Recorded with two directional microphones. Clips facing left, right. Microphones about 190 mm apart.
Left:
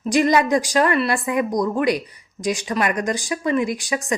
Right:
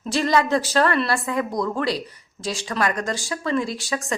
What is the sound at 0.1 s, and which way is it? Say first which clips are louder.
Speech: left 3 dB; 15° left (ahead or behind).